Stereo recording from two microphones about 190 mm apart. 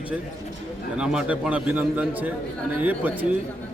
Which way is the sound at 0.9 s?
5° right (ahead or behind).